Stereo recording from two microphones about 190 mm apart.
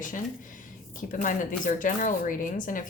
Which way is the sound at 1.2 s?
45° left (ahead or behind).